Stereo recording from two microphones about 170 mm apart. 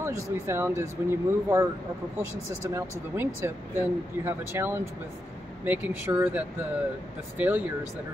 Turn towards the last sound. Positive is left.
turn(degrees=-10)  # may be behind; listen again after turning